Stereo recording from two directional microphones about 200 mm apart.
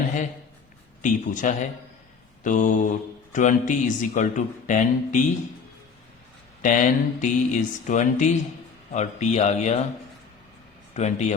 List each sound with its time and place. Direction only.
1.0 s speech: 40° left (ahead or behind)
6.6 s speech: 40° left (ahead or behind)
10.9 s speech: 35° left (ahead or behind)